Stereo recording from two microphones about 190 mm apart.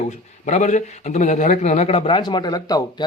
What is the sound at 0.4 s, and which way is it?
A man's voice, 40° left (ahead or behind).